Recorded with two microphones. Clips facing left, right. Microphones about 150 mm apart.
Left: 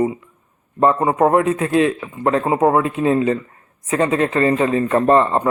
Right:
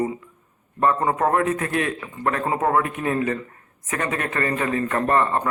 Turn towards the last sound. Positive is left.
turn(degrees=25)  # may be behind; listen again after turning